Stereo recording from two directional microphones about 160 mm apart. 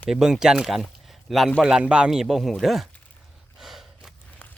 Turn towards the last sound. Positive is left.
turn(degrees=0)  # may be behind; listen again after turning